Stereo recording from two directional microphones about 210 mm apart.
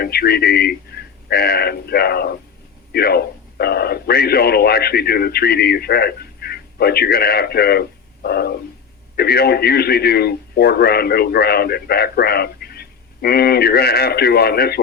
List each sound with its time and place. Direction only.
0.0 s a man's voice: 50° left (ahead or behind)